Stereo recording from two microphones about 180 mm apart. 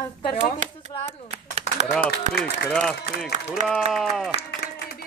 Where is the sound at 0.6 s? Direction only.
40° right (ahead or behind).